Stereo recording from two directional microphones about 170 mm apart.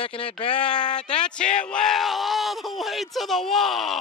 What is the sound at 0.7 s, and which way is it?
Speech, 5° left (ahead or behind).